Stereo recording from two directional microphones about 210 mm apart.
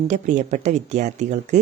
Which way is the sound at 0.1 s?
35° right (ahead or behind).